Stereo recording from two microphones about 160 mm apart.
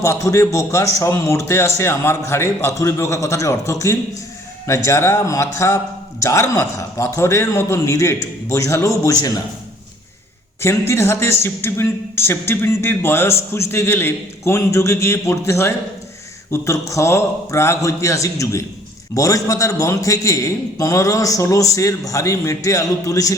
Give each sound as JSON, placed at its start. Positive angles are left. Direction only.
{"t": 0.0, "sound": "a man's voice", "side_deg": 20}
{"t": 10.6, "sound": "a man's voice", "side_deg": 15}